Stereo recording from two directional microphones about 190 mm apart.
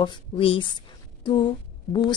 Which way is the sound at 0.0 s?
25° left (ahead or behind).